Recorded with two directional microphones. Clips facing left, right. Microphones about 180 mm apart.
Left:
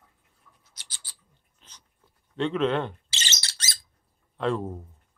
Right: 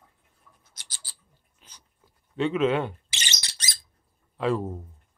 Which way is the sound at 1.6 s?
10° right (ahead or behind).